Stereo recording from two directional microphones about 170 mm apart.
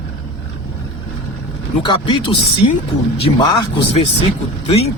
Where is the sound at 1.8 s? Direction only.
30° left (ahead or behind).